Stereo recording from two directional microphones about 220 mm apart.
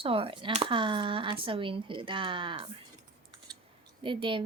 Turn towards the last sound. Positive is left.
turn(degrees=-20)  # may be behind; listen again after turning